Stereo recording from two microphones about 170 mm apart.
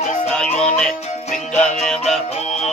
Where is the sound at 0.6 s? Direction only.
5° left (ahead or behind).